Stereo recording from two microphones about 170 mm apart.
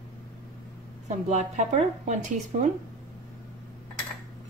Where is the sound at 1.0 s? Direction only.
45° right (ahead or behind).